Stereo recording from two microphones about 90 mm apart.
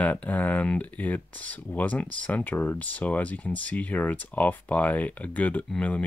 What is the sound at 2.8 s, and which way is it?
Speech, 15° left (ahead or behind).